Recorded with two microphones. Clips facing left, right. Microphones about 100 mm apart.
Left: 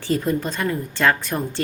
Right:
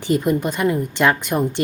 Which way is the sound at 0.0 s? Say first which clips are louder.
Right 3 dB; 15° right (ahead or behind).